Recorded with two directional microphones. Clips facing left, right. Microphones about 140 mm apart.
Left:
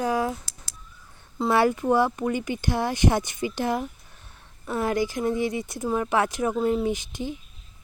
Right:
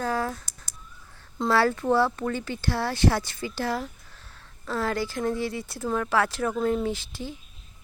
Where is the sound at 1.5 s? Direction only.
15° left (ahead or behind).